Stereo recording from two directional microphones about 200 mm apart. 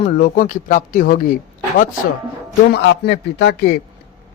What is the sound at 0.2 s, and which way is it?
Speech, 40° left (ahead or behind).